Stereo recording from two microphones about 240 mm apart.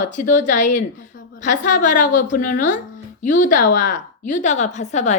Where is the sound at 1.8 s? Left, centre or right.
Left.